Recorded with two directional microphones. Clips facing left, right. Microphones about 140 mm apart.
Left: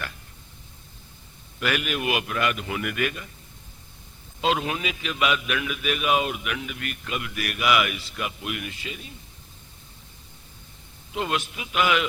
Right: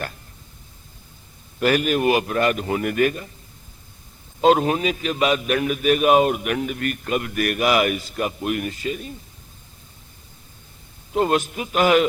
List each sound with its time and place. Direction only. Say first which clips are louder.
1.5 s a man's voice: right 8 dB; 40° right (ahead or behind)
4.4 s a man's voice: right 8 dB; 40° right (ahead or behind)
11.1 s a man's voice: right 8 dB; 40° right (ahead or behind)